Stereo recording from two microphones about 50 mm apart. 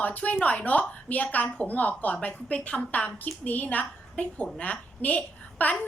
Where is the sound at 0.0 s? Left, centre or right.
Left.